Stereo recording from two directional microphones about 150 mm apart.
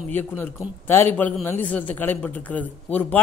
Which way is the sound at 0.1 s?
15° left (ahead or behind).